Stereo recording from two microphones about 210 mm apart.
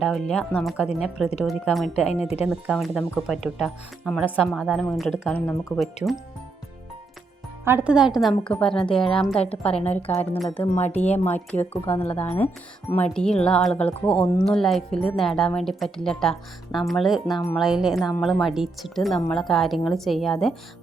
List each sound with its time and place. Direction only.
0.0 s a woman's voice: centre (ahead or behind)
6.0 s speech: 5° right (ahead or behind)
7.6 s a woman's voice: 10° right (ahead or behind)
9.7 s speech: 30° left (ahead or behind)
10.2 s speech: 5° left (ahead or behind)
10.8 s speech: 30° left (ahead or behind)
11.3 s a woman's voice: 10° left (ahead or behind)
14.1 s speech: 25° left (ahead or behind)
14.4 s a woman's voice: centre (ahead or behind)